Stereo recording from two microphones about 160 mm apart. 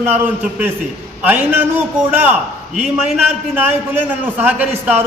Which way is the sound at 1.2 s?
10° right (ahead or behind).